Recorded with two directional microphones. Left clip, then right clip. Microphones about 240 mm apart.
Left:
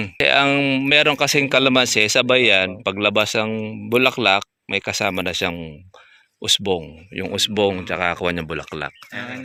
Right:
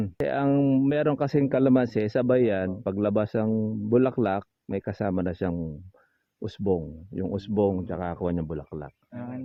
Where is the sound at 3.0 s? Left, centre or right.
Centre.